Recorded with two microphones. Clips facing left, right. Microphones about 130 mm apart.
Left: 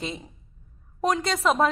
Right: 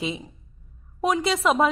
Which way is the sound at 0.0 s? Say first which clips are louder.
Right 4 dB; 5° right (ahead or behind).